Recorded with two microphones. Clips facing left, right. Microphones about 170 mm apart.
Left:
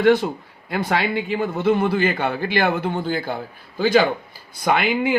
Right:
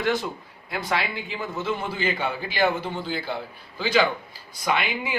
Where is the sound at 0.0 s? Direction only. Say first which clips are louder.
Left 9 dB; 55° left (ahead or behind).